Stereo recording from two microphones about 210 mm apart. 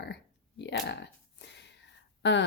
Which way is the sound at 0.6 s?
55° left (ahead or behind).